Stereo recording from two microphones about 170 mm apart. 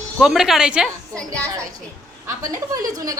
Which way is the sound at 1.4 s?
20° right (ahead or behind).